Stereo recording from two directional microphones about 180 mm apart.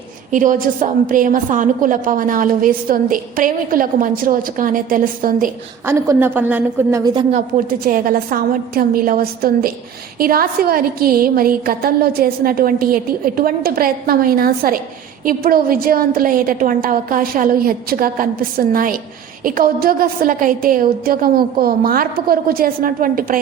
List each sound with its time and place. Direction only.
0.3 s a woman's voice: 45° right (ahead or behind)
5.8 s a woman's voice: 15° right (ahead or behind)
7.3 s a woman's voice: 50° right (ahead or behind)